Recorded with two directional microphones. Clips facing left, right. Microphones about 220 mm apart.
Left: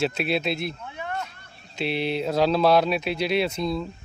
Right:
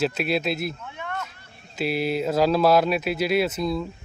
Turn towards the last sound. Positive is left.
turn(degrees=0)  # may be behind; listen again after turning